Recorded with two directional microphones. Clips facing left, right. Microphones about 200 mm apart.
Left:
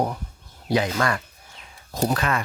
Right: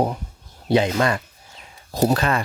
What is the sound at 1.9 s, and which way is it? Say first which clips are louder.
Speech: right 4 dB; 35° right (ahead or behind).